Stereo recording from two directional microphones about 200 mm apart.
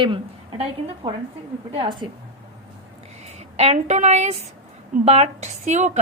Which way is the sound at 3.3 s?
35° right (ahead or behind).